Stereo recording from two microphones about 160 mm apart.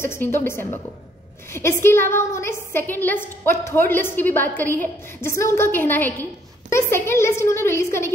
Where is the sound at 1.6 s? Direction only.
15° left (ahead or behind).